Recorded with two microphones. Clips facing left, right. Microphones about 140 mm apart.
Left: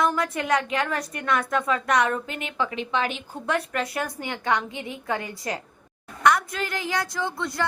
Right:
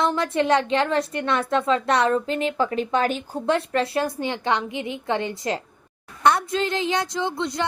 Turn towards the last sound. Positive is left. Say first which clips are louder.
# right 3 dB
turn(degrees=-20)  # may be behind; listen again after turning